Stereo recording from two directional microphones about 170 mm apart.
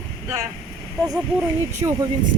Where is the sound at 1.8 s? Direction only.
25° right (ahead or behind).